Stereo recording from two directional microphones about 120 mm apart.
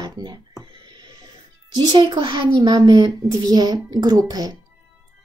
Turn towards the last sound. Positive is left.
turn(degrees=-35)  # may be behind; listen again after turning